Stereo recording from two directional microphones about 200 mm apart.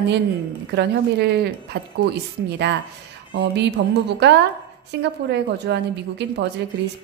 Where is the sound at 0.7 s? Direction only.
55° right (ahead or behind).